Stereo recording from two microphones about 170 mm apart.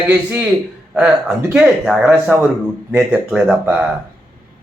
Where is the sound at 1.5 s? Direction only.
5° right (ahead or behind).